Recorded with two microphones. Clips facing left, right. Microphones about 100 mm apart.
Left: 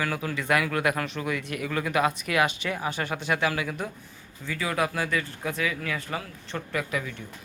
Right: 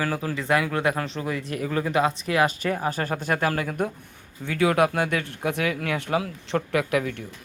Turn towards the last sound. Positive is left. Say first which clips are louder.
# right 6 dB
turn(degrees=-65)  # may be behind; listen again after turning